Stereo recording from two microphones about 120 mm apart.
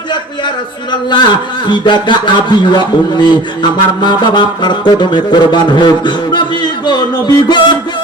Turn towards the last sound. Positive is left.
turn(degrees=35)  # may be behind; listen again after turning